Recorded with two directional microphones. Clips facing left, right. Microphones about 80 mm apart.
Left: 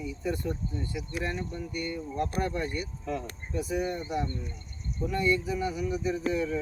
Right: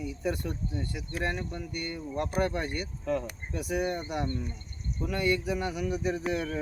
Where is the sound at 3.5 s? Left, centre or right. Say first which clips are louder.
Even; right.